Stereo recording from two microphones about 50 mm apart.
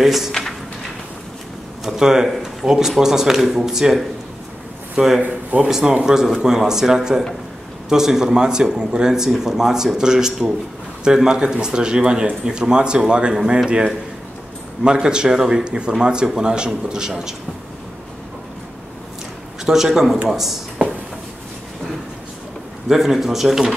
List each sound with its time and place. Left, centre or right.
0.0 s speech: centre
0.3 s drawer open or close: centre
1.9 s speech: centre
5.2 s speech: right
5.7 s speech: centre
14.8 s speech: centre
19.6 s speech: centre
22.8 s speech: centre